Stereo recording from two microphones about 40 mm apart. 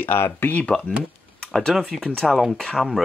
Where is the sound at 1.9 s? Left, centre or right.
Centre.